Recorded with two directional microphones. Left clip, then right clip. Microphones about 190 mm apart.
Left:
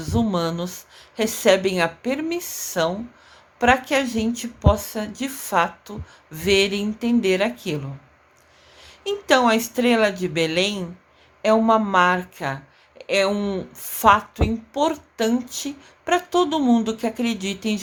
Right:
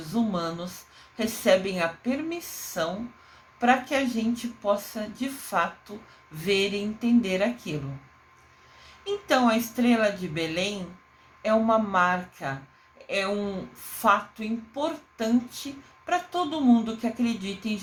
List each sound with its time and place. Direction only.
0.1 s speech: 45° left (ahead or behind)
9.0 s speech: 45° left (ahead or behind)